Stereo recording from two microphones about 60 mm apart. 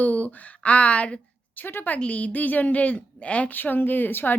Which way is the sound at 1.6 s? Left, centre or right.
Left.